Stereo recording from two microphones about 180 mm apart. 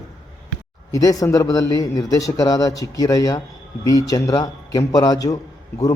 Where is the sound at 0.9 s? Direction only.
20° left (ahead or behind).